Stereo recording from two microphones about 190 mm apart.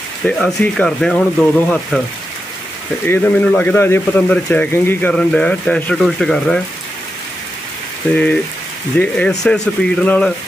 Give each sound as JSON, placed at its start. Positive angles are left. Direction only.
{"t": 0.3, "sound": "speech", "side_deg": 5}
{"t": 3.1, "sound": "speech", "side_deg": 10}
{"t": 8.0, "sound": "speech", "side_deg": 10}